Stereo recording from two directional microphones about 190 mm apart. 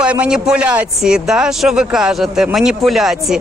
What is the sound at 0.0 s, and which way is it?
A man's voice, 5° right (ahead or behind).